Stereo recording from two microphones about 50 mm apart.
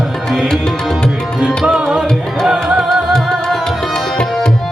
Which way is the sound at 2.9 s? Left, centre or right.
Centre.